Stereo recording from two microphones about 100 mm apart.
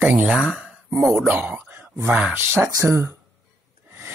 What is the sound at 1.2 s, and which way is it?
Speech, 20° right (ahead or behind).